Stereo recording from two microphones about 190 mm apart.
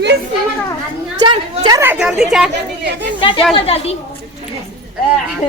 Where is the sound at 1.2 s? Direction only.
25° right (ahead or behind).